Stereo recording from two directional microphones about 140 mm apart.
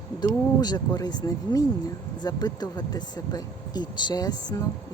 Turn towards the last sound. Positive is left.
turn(degrees=25)  # may be behind; listen again after turning